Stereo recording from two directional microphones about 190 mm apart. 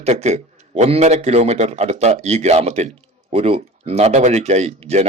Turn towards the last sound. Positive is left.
turn(degrees=-35)  # may be behind; listen again after turning